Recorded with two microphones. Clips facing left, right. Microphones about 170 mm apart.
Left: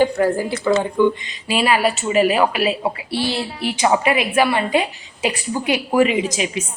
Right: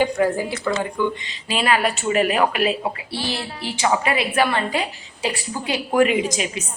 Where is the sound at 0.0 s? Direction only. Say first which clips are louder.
Left 3 dB; 15° right (ahead or behind).